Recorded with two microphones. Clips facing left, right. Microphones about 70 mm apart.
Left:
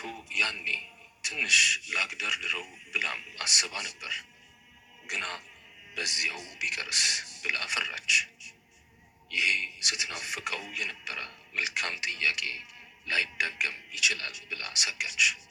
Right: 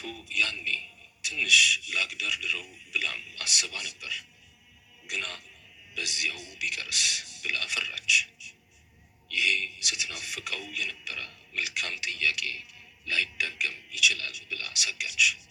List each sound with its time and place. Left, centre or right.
0.0 s speech: left
9.3 s speech: left